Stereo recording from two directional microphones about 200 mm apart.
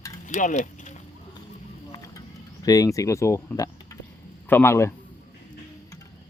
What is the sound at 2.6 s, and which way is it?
A man's voice, 20° left (ahead or behind).